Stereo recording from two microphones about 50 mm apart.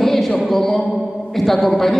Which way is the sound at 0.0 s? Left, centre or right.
Centre.